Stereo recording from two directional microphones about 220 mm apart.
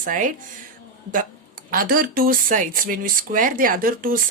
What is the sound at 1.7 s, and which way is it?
Speech, 40° right (ahead or behind).